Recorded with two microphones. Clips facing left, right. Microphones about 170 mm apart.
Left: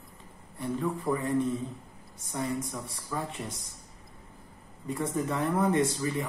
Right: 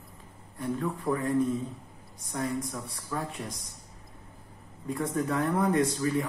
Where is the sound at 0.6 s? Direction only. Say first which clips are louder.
Even; 5° left (ahead or behind).